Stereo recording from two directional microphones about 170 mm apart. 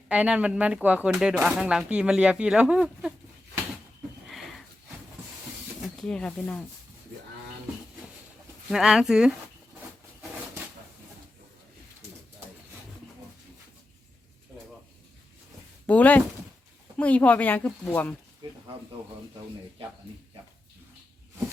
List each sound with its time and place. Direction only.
0.1 s speech: 10° right (ahead or behind)
4.3 s sniff: centre (ahead or behind)
5.8 s speech: 5° left (ahead or behind)
8.7 s speech: 5° right (ahead or behind)
15.9 s speech: 10° left (ahead or behind)
18.4 s speech: 30° right (ahead or behind)